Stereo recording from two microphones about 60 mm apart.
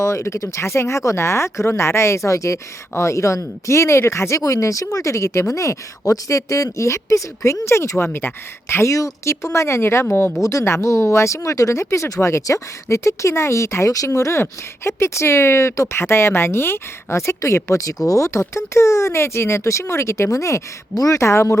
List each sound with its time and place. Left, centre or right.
0.0 s speech: left
5.5 s speech: left
8.7 s speech: left
10.4 s speech: left
13.9 s speech: left
16.0 s speech: left
21.2 s speech: left